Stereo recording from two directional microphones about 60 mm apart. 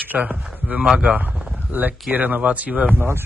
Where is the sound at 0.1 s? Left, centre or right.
Right.